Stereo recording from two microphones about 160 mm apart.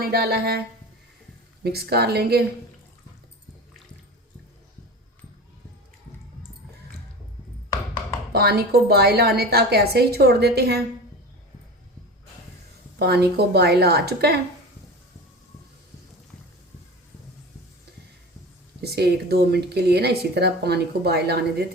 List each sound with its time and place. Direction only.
0.0 s speech: 75° right (ahead or behind)
1.6 s a woman's voice: 85° right
8.3 s a woman's voice: 80° right
13.0 s speech: 90° right
18.8 s speech: 90° right